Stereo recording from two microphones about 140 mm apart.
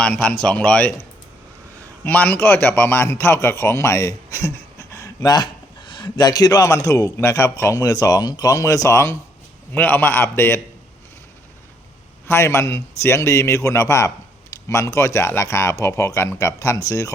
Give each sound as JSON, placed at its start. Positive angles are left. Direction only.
{"t": 0.0, "sound": "speech", "side_deg": 5}
{"t": 2.0, "sound": "a man's voice", "side_deg": 10}
{"t": 12.3, "sound": "a man's voice", "side_deg": 20}